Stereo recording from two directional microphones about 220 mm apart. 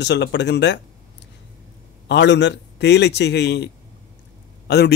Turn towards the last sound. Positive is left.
turn(degrees=50)  # may be behind; listen again after turning